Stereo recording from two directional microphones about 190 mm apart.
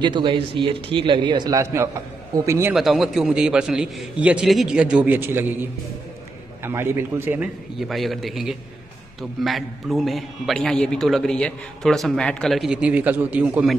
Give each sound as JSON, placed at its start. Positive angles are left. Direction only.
{"t": 0.0, "sound": "a man's voice", "side_deg": -25}
{"t": 2.7, "sound": "a man's voice", "side_deg": 0}
{"t": 7.9, "sound": "a man's voice", "side_deg": 0}